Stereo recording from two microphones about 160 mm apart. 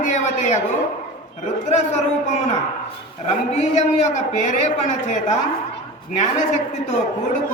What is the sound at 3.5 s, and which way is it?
A woman's voice, 45° left (ahead or behind).